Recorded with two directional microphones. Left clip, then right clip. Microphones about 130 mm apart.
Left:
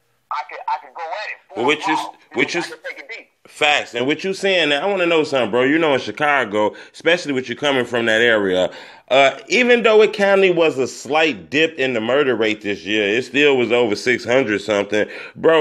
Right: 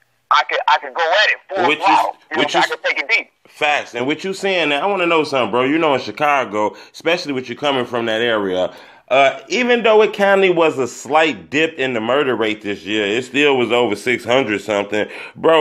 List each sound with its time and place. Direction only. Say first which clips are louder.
0.3 s a man's voice: right 10 dB; 30° right (ahead or behind)
3.5 s speech: left 1 dB; 30° left (ahead or behind)
3.9 s speech: left 1 dB; 10° left (ahead or behind)
14.7 s speech: even; 20° left (ahead or behind)